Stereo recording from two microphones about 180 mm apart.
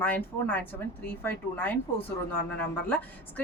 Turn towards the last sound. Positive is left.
turn(degrees=10)  # may be behind; listen again after turning